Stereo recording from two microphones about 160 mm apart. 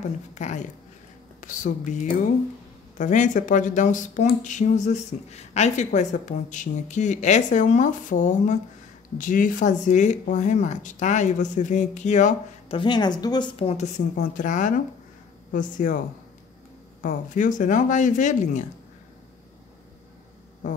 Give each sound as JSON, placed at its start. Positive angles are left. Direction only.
{"t": 0.3, "sound": "speech", "side_deg": 50}
{"t": 12.7, "sound": "speech", "side_deg": 30}
{"t": 13.6, "sound": "speech", "side_deg": 40}
{"t": 17.0, "sound": "speech", "side_deg": 55}